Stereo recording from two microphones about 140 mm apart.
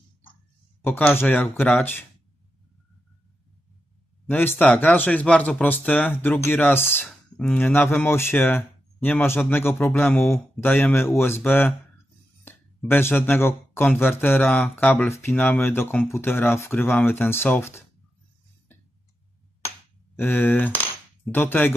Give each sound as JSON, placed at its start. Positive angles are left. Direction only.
{"t": 0.8, "sound": "speech", "side_deg": 15}
{"t": 4.3, "sound": "speech", "side_deg": 15}
{"t": 20.2, "sound": "speech", "side_deg": 15}